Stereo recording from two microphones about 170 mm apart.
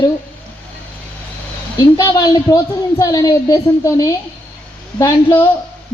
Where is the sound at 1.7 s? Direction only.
20° left (ahead or behind).